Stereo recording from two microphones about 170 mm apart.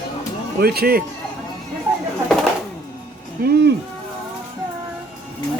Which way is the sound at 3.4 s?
80° right.